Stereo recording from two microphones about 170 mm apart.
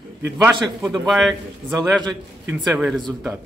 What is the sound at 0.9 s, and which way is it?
Speech, centre (ahead or behind).